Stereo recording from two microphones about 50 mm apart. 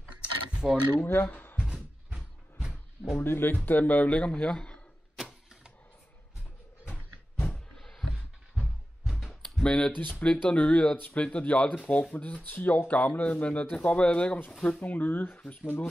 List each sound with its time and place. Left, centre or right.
0.2 s keys jangling: right
1.0 s speech: left
3.2 s speech: left
3.6 s speech: left
4.5 s a man's voice: centre
5.1 s vehicle: centre
7.7 s a sound: centre
9.6 s speech: centre
14.9 s speech: left